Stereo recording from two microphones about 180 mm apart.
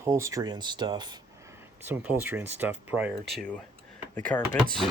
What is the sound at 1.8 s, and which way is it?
Speech, 10° right (ahead or behind).